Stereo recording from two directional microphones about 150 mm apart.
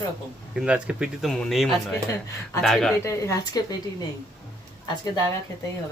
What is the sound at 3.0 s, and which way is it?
Speech, 20° left (ahead or behind).